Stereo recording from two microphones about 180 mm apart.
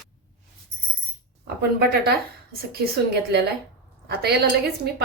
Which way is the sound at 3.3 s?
65° right (ahead or behind).